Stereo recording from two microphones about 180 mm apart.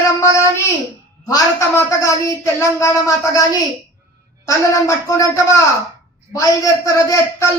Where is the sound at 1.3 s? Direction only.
15° left (ahead or behind).